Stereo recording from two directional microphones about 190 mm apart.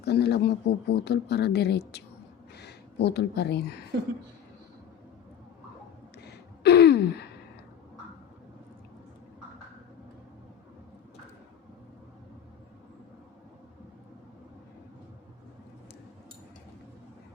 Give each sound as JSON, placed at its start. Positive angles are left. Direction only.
{"t": 0.0, "sound": "speech", "side_deg": 60}
{"t": 6.2, "sound": "gasp", "side_deg": 60}